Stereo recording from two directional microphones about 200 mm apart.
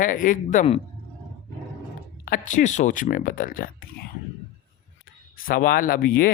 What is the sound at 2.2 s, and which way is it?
Speech, 40° left (ahead or behind).